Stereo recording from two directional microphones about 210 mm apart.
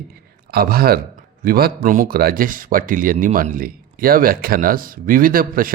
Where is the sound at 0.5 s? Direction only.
45° right (ahead or behind).